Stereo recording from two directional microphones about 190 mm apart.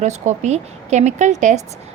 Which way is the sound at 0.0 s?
35° right (ahead or behind).